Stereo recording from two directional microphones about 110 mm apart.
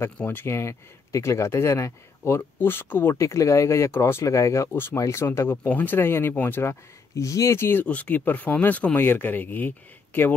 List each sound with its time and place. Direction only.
0.0 s speech: 20° left (ahead or behind)